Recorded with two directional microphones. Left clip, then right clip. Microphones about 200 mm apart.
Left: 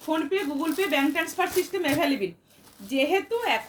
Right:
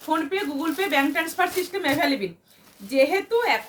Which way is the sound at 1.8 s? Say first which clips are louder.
Right 4 dB; 15° right (ahead or behind).